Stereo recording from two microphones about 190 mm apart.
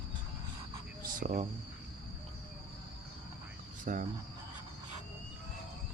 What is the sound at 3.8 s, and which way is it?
Cricket, 45° right (ahead or behind).